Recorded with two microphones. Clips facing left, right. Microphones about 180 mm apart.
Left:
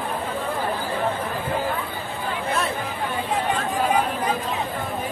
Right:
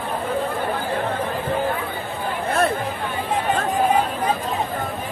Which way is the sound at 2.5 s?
55° right (ahead or behind).